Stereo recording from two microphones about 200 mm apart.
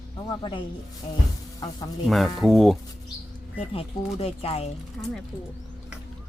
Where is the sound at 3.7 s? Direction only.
30° left (ahead or behind).